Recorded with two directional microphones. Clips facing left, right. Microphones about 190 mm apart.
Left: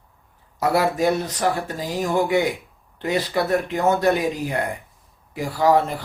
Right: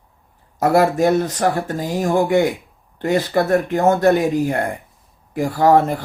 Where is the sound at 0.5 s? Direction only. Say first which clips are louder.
Right 5 dB; 50° right (ahead or behind).